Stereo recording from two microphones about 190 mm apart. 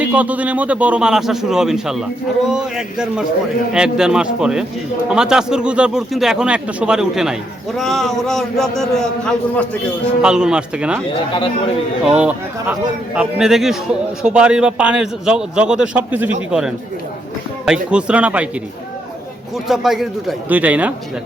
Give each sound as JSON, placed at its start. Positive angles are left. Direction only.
{"t": 0.0, "sound": "a man's voice", "side_deg": -5}
{"t": 11.1, "sound": "speech", "side_deg": 30}
{"t": 12.1, "sound": "a man's voice", "side_deg": -5}
{"t": 19.6, "sound": "a man's voice", "side_deg": 0}